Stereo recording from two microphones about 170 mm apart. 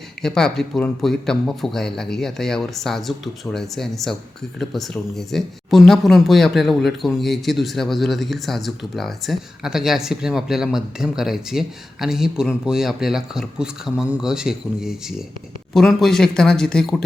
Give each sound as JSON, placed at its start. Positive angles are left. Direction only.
{"t": 0.2, "sound": "speech", "side_deg": 5}